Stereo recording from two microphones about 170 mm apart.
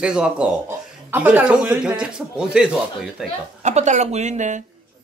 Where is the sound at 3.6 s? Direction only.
45° right (ahead or behind).